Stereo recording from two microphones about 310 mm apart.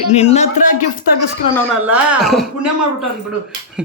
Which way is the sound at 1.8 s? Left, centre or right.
Centre.